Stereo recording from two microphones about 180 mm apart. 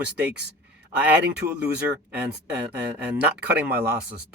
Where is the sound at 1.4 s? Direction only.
40° right (ahead or behind).